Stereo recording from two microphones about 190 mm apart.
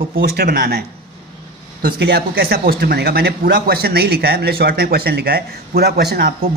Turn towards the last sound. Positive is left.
turn(degrees=-55)  # may be behind; listen again after turning